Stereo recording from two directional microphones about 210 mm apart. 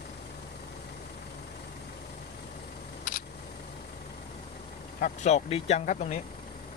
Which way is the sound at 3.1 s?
40° left (ahead or behind).